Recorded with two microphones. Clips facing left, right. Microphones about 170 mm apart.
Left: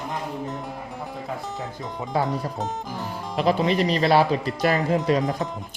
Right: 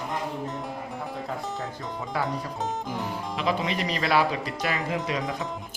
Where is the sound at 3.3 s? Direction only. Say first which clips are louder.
Left 7 dB; 35° left (ahead or behind).